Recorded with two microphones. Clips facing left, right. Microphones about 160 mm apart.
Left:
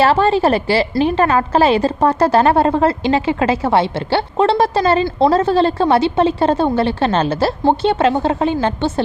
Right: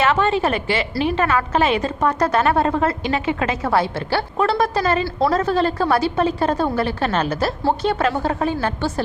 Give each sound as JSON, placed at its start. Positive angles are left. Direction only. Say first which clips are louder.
{"t": 0.0, "sound": "a woman's voice", "louder": "left 5 dB", "side_deg": 35}